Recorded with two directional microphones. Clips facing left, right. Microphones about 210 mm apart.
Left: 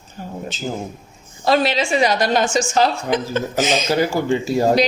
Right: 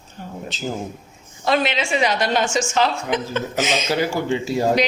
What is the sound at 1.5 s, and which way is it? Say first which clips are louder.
A woman's voice: left 3 dB; 35° left (ahead or behind).